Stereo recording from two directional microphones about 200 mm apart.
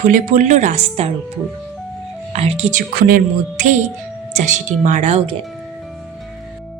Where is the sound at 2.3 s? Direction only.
30° right (ahead or behind).